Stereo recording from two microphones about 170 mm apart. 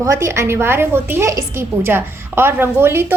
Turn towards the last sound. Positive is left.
turn(degrees=-15)  # may be behind; listen again after turning